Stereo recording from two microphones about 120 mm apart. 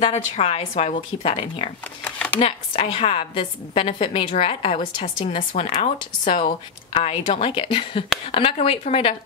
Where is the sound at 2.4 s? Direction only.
55° left (ahead or behind).